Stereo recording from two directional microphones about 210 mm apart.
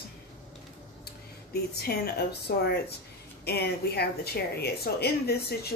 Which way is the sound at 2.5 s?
50° left (ahead or behind).